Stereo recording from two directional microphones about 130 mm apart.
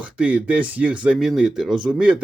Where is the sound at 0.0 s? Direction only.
10° right (ahead or behind).